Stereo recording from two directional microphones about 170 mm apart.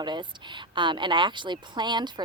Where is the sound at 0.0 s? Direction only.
25° right (ahead or behind).